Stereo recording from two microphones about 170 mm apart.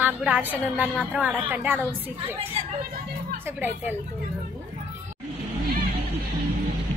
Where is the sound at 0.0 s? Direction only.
10° right (ahead or behind).